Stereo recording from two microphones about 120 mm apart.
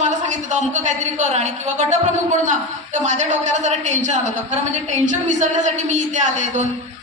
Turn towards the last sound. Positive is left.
turn(degrees=-90)